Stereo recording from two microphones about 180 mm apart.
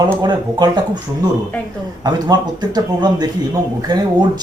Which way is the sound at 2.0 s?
20° right (ahead or behind).